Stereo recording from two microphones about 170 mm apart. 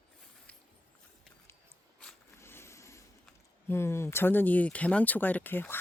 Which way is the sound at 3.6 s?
15° left (ahead or behind).